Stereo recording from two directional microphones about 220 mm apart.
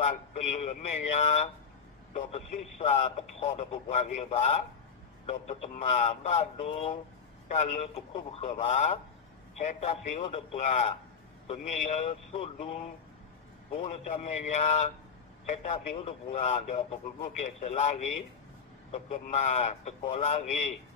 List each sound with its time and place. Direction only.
0.0 s a man's voice: 35° left (ahead or behind)